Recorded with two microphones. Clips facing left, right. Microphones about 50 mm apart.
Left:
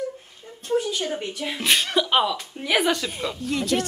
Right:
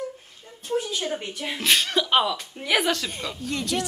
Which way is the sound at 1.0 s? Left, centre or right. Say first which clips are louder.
Left 1 dB; centre.